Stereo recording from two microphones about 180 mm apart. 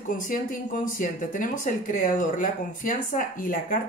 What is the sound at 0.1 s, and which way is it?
Speech, 50° left (ahead or behind).